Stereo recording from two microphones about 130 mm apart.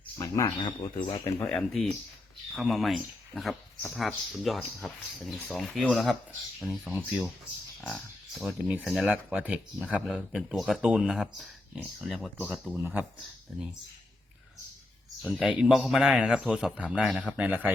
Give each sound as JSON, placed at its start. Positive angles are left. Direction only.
{"t": 0.2, "sound": "speech", "side_deg": 30}
{"t": 1.5, "sound": "speech", "side_deg": 5}
{"t": 7.8, "sound": "a sound", "side_deg": 0}
{"t": 8.4, "sound": "speech", "side_deg": -5}
{"t": 12.7, "sound": "speech", "side_deg": -15}
{"t": 15.2, "sound": "speech", "side_deg": 0}